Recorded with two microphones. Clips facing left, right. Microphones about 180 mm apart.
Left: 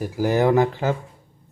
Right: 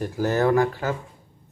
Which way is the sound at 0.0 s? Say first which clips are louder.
Left 2 dB; 15° left (ahead or behind).